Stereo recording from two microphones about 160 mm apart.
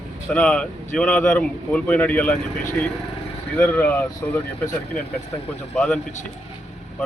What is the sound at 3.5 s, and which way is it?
Speech, 10° left (ahead or behind).